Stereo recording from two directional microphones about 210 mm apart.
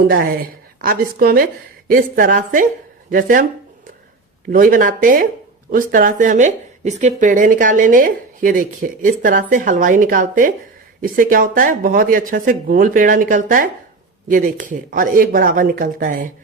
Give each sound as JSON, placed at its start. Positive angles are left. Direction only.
{"t": 0.8, "sound": "a woman's voice", "side_deg": -45}
{"t": 4.5, "sound": "speech", "side_deg": -40}